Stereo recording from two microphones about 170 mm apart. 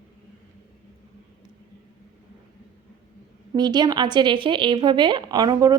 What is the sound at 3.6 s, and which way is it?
A woman's voice, 25° right (ahead or behind).